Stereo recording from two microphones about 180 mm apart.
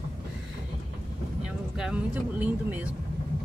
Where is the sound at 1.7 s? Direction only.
5° right (ahead or behind).